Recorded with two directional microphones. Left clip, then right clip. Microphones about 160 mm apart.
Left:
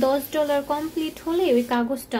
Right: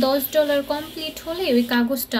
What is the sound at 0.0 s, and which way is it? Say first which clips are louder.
A woman's voice: right 2 dB; 40° left (ahead or behind).